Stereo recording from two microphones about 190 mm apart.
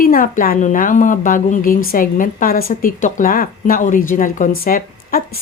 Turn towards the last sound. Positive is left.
turn(degrees=50)  # may be behind; listen again after turning